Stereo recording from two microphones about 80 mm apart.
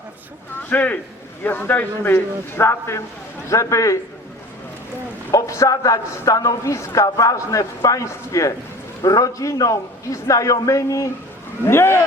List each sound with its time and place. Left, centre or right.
0.7 s a man's voice: left
5.3 s a man's voice: left
11.6 s speech: left